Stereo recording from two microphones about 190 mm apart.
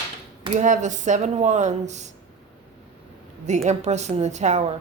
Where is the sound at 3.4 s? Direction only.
40° right (ahead or behind).